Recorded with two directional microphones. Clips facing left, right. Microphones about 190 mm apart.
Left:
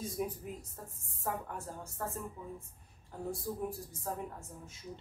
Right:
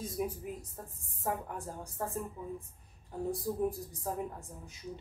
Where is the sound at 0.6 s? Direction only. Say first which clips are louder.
Right 2 dB; 15° right (ahead or behind).